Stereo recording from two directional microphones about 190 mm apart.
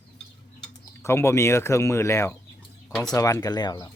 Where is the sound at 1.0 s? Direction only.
15° left (ahead or behind).